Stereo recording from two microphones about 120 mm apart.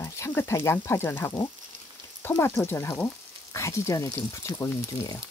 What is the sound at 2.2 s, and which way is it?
Speech, 20° left (ahead or behind).